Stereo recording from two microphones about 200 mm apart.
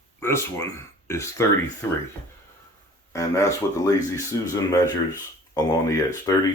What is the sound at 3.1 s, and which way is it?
Speech, 15° left (ahead or behind).